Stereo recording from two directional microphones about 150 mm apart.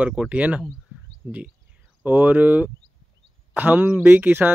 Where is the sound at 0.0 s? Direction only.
10° right (ahead or behind).